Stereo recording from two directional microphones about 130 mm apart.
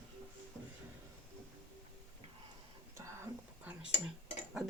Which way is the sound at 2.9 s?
20° right (ahead or behind).